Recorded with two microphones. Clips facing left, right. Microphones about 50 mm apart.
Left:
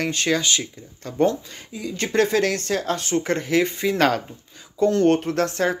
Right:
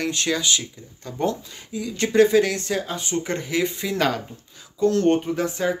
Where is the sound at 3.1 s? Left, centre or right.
Left.